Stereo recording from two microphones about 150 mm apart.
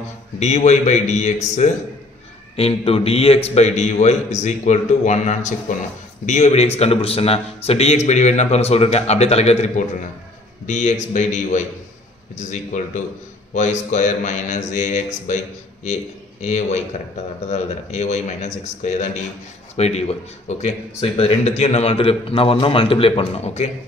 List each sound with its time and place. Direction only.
0.4 s a man's voice: 50° left (ahead or behind)
2.5 s a man's voice: 40° left (ahead or behind)